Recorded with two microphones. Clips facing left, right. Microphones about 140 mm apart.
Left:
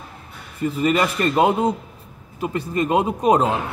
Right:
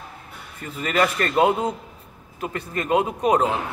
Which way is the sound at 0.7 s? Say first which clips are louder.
Left 1 dB; 20° left (ahead or behind).